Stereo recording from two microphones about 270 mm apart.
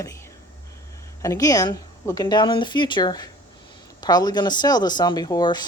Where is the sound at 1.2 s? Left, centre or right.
Centre.